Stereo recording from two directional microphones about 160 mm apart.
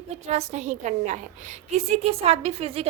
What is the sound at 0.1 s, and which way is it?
A woman's voice, 45° right (ahead or behind).